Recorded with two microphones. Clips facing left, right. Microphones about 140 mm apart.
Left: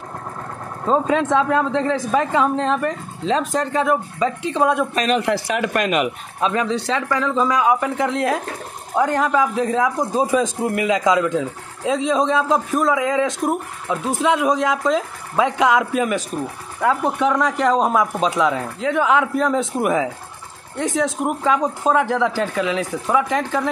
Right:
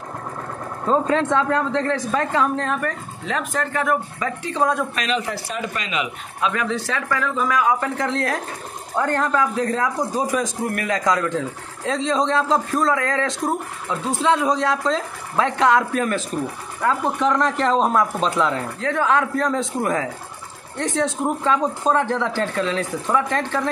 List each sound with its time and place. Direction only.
0.8 s speech: 15° left (ahead or behind)
5.1 s speech: 70° left (ahead or behind)
6.4 s a man's voice: 25° left (ahead or behind); by 23.7 s 10° left (ahead or behind)